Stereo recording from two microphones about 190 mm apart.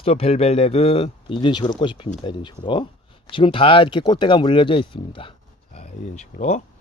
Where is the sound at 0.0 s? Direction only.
30° left (ahead or behind).